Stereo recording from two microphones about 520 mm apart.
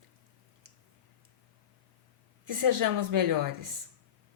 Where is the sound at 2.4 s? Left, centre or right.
Right.